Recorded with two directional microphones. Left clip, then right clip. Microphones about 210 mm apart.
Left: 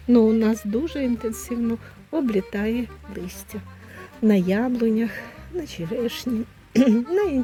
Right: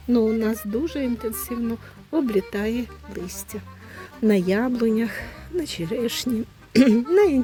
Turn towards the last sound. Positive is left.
turn(degrees=-15)  # may be behind; listen again after turning